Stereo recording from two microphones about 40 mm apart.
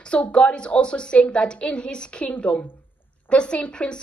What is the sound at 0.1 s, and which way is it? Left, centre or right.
A woman's voice, left.